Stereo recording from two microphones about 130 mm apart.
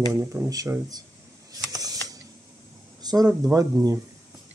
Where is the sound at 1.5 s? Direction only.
30° right (ahead or behind).